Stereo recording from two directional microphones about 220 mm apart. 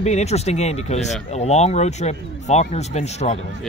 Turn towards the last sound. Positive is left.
turn(degrees=30)  # may be behind; listen again after turning